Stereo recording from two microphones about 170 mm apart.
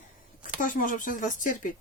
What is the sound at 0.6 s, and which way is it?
Speech, 50° left (ahead or behind).